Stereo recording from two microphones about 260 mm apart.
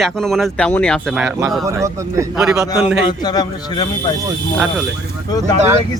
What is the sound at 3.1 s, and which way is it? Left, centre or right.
Speech, centre.